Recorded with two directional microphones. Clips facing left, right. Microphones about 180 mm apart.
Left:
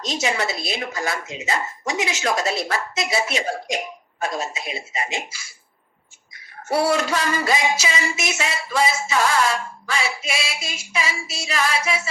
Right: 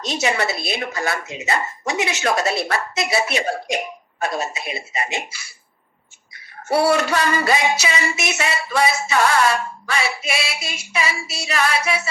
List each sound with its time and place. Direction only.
0.0 s speech: 65° right (ahead or behind)
6.7 s speech: 65° right (ahead or behind)